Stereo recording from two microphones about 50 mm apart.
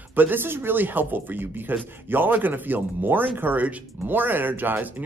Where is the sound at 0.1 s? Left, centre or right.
Right.